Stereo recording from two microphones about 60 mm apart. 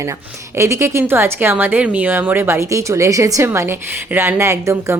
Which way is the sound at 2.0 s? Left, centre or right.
Right.